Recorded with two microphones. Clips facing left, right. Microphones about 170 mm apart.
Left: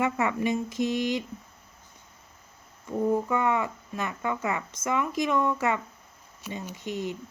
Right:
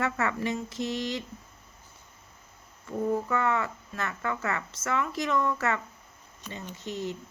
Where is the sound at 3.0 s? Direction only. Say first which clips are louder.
Left 2 dB; 15° left (ahead or behind).